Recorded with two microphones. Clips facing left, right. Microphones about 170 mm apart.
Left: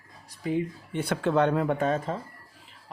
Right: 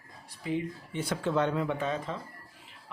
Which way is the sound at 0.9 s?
60° left (ahead or behind).